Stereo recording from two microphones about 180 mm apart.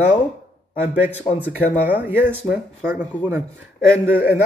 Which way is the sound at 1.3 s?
10° right (ahead or behind).